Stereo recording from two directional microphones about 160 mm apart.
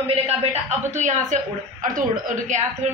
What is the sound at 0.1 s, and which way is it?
A woman's voice, 40° right (ahead or behind).